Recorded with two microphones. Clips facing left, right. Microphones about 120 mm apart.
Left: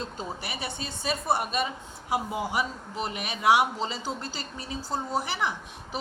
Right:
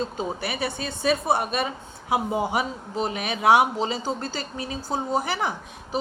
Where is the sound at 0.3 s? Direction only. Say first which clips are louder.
Right 7 dB; 55° right (ahead or behind).